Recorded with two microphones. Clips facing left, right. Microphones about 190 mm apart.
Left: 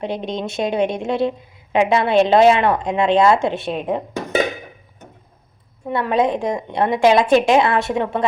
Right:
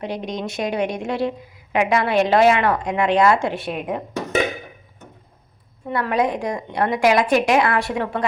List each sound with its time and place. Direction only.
0.0 s a woman's voice: 25° left (ahead or behind)
5.9 s a woman's voice: 25° left (ahead or behind)